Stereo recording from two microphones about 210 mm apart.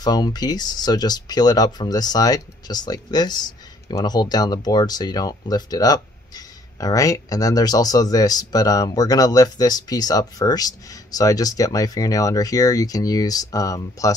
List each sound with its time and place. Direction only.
0.0 s speech: 20° left (ahead or behind)